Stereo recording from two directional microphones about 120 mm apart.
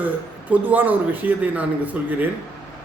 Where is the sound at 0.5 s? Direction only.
15° right (ahead or behind).